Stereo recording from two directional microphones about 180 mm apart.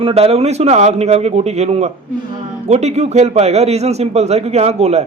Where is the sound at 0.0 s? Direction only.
35° right (ahead or behind).